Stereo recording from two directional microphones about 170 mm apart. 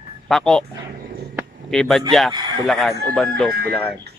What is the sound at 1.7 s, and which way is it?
A man's voice, centre (ahead or behind).